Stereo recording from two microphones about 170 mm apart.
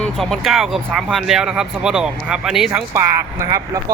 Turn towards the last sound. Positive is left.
turn(degrees=-20)  # may be behind; listen again after turning